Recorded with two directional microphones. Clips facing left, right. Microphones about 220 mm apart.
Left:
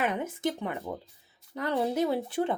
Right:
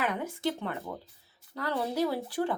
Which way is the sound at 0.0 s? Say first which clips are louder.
Left 2 dB; 20° left (ahead or behind).